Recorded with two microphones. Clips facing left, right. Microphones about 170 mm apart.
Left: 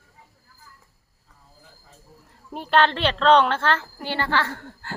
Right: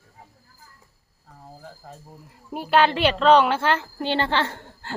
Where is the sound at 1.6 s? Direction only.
60° right (ahead or behind).